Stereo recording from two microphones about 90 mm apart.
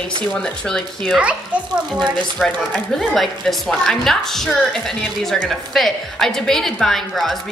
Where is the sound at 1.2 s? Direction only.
10° right (ahead or behind).